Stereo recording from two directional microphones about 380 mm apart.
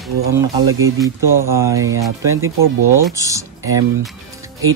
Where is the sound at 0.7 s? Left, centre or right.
Right.